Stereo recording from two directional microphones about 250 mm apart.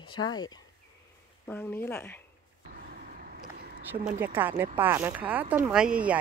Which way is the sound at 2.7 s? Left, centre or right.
Right.